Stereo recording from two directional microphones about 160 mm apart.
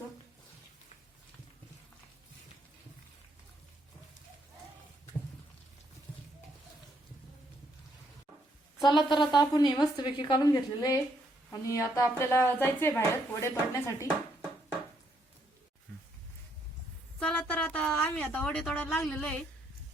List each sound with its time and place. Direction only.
8.8 s a woman's voice: 30° left (ahead or behind)
17.2 s a sound: 5° left (ahead or behind)
18.9 s a woman's voice: 5° left (ahead or behind)